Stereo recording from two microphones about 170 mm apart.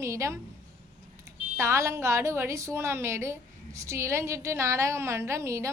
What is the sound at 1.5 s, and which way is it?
A woman's voice, 15° right (ahead or behind).